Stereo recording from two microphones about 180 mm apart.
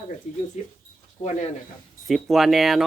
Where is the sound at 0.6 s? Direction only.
45° left (ahead or behind).